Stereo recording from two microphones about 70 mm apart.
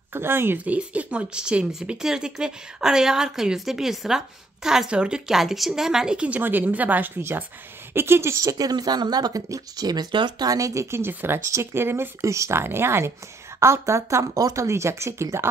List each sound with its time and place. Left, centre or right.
0.1 s speech: right
0.7 s speech: centre
6.4 s a woman's voice: right
7.2 s speech: right
8.4 s speech: right
10.6 s speech: right
12.2 s speech: right